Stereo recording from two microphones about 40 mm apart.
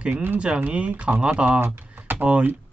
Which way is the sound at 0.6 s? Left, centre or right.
Right.